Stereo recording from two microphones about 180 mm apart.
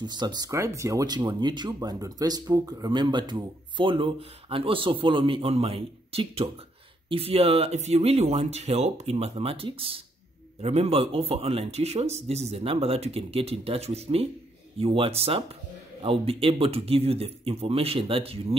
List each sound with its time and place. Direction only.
0.0 s speech: 25° right (ahead or behind)